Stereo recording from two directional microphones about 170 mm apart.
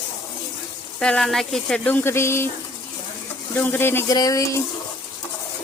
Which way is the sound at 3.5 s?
15° left (ahead or behind).